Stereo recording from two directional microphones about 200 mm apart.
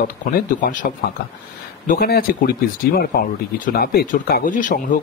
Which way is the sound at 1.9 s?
50° left (ahead or behind).